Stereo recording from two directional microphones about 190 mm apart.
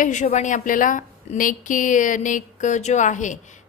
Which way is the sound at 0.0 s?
40° left (ahead or behind).